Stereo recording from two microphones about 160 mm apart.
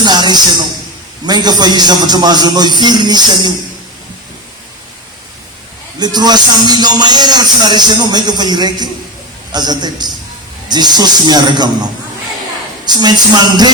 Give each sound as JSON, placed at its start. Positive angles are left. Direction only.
{"t": 0.0, "sound": "music", "side_deg": -25}
{"t": 1.2, "sound": "speech", "side_deg": -25}
{"t": 6.0, "sound": "speech", "side_deg": -25}